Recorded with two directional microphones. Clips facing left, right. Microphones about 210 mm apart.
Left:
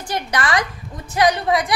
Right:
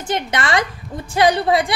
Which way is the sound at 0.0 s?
25° right (ahead or behind).